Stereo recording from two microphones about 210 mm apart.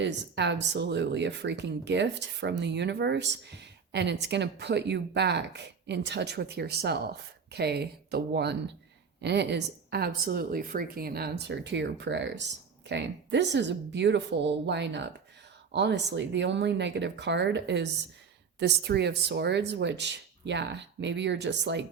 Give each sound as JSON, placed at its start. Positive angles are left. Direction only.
{"t": 0.0, "sound": "a woman's voice", "side_deg": -55}